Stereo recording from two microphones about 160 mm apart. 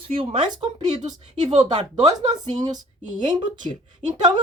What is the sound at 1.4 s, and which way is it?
Speech, 45° right (ahead or behind).